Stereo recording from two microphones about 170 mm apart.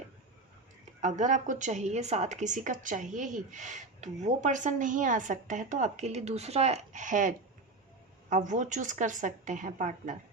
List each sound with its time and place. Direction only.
1.0 s speech: 45° right (ahead or behind)